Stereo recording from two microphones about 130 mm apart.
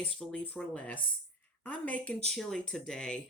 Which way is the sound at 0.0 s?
5° left (ahead or behind).